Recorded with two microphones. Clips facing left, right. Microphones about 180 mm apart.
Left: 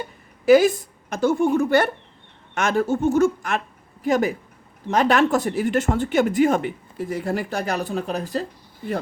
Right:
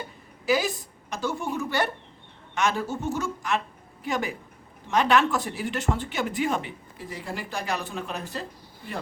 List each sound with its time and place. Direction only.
0.4 s a woman's voice: 50° left (ahead or behind)